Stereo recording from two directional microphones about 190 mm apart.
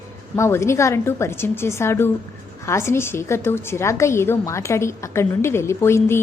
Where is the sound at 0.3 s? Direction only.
15° left (ahead or behind).